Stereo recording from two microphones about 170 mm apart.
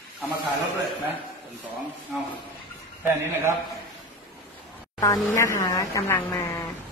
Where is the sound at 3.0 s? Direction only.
15° right (ahead or behind).